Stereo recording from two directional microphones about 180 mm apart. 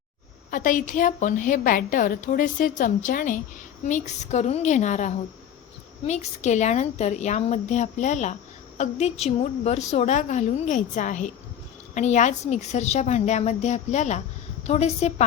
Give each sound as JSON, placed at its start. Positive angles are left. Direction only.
{"t": 0.5, "sound": "a woman's voice", "side_deg": 45}